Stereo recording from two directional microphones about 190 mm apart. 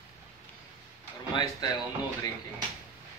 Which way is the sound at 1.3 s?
25° left (ahead or behind).